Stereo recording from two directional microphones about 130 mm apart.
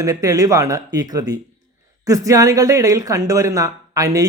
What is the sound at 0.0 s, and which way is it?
Speech, 25° right (ahead or behind).